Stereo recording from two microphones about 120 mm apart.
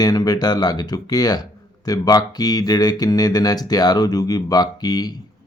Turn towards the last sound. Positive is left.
turn(degrees=35)  # may be behind; listen again after turning